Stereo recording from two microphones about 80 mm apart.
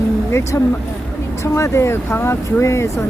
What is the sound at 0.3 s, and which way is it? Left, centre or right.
Speech, left.